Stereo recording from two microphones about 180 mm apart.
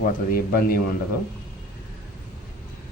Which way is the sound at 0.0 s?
55° left (ahead or behind).